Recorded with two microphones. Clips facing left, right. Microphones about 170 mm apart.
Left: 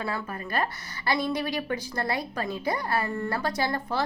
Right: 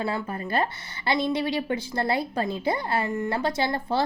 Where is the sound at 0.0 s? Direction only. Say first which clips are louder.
Right 4 dB; 25° right (ahead or behind).